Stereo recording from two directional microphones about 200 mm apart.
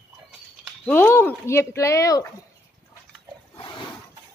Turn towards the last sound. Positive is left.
turn(degrees=25)  # may be behind; listen again after turning